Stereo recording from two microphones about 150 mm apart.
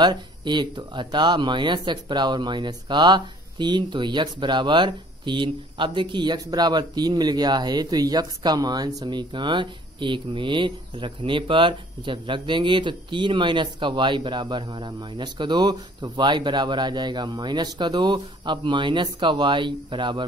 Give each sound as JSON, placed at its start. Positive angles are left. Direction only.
{"t": 0.0, "sound": "speech", "side_deg": -30}